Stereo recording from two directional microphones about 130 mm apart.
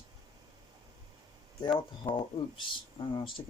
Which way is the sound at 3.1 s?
40° left (ahead or behind).